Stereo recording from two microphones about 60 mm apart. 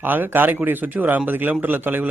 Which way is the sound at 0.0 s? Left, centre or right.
Right.